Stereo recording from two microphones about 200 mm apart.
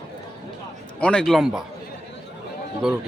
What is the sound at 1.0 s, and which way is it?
Speech, 5° left (ahead or behind).